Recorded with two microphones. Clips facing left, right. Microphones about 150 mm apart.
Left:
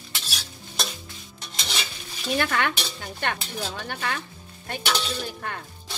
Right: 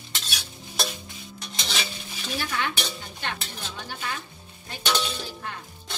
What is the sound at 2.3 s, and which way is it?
Dishes, 65° left (ahead or behind).